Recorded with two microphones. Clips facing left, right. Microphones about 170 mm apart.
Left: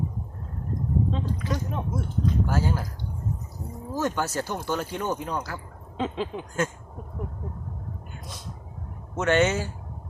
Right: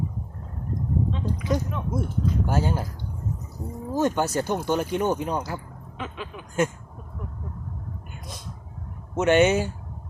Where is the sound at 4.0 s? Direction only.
20° right (ahead or behind).